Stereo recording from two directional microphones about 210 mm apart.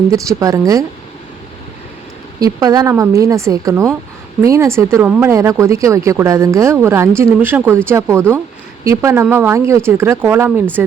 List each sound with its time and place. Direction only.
0.1 s speech: 15° right (ahead or behind)
2.4 s speech: 15° right (ahead or behind)